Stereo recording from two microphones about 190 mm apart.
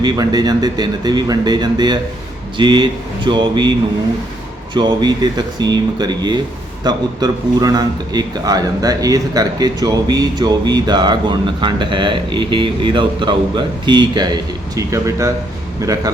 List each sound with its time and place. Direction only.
0.0 s a man's voice: 20° right (ahead or behind)